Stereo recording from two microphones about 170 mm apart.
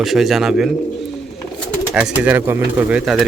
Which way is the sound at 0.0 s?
Centre (ahead or behind).